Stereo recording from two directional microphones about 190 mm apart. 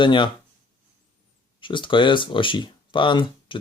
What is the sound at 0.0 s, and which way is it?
Speech, 25° left (ahead or behind).